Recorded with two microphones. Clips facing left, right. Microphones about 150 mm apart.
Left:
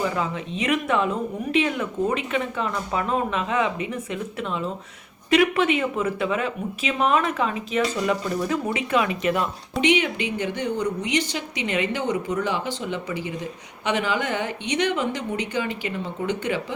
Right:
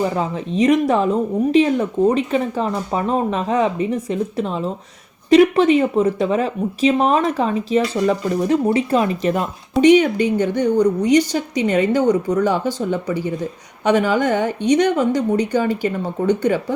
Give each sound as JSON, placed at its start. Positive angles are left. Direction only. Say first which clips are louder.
{"t": 0.0, "sound": "a woman's voice", "louder": "right 5 dB", "side_deg": -35}